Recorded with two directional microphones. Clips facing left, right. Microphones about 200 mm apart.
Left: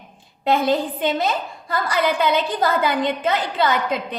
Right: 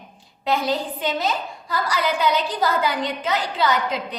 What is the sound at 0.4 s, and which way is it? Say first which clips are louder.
A woman's voice: left 4 dB; 55° left (ahead or behind).